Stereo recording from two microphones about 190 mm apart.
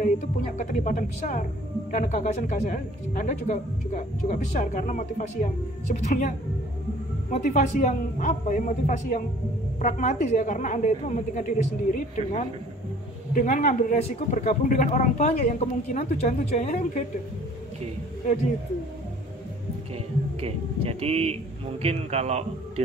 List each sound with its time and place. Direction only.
0.6 s speech: 40° left (ahead or behind)
20.3 s speech: 30° right (ahead or behind)